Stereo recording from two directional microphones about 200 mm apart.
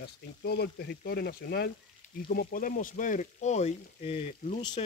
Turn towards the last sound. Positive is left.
turn(degrees=30)  # may be behind; listen again after turning